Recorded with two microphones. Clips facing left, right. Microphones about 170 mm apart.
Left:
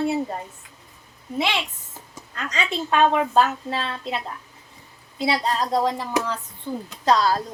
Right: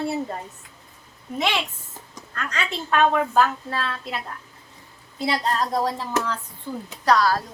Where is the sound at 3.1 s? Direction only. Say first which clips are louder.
Left 1 dB; 20° left (ahead or behind).